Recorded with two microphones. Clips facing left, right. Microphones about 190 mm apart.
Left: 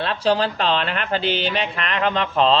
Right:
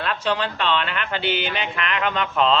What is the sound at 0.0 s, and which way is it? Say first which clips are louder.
Speech: left 4 dB; 35° left (ahead or behind).